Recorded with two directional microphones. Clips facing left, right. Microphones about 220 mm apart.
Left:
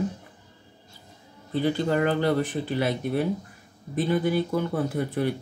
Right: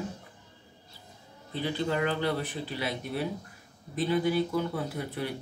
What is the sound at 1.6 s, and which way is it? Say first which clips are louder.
Speech: left 5 dB; 45° left (ahead or behind).